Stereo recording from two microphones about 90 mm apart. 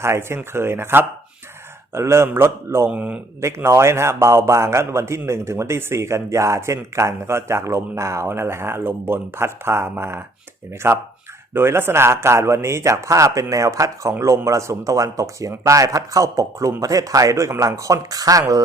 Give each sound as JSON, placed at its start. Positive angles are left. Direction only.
{"t": 0.0, "sound": "a man's voice", "side_deg": -30}
{"t": 2.9, "sound": "speech", "side_deg": -15}
{"t": 3.4, "sound": "a man's voice", "side_deg": -30}